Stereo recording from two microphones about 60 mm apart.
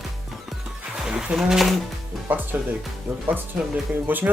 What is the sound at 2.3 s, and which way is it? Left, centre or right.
Speech, right.